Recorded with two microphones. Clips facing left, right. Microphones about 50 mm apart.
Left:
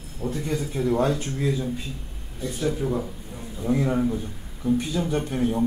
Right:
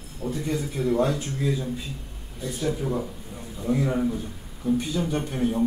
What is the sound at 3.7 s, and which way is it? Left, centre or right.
Speech, centre.